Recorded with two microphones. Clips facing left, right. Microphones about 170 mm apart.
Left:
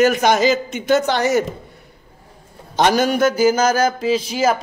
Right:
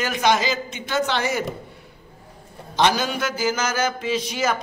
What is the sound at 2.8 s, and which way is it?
Speech, 50° left (ahead or behind).